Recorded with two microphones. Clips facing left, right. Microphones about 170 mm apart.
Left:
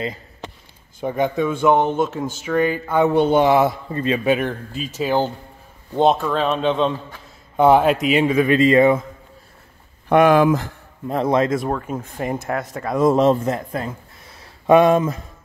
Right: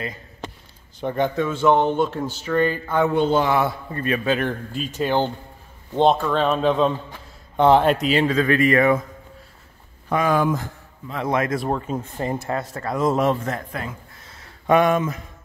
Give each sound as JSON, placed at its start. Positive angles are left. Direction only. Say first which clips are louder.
{"t": 1.0, "sound": "a man's voice", "louder": "left 2 dB", "side_deg": 10}
{"t": 4.4, "sound": "speech", "louder": "even", "side_deg": 0}
{"t": 10.0, "sound": "speech", "louder": "left 7 dB", "side_deg": 70}
{"t": 11.2, "sound": "a man's voice", "louder": "left 3 dB", "side_deg": 25}